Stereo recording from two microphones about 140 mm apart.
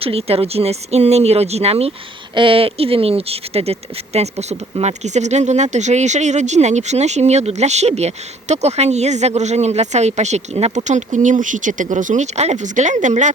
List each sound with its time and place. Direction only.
0.0 s speech: 45° right (ahead or behind); by 13.3 s 60° right (ahead or behind)